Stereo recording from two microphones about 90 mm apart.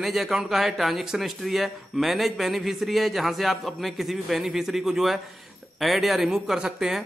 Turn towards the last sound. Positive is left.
turn(degrees=-5)  # may be behind; listen again after turning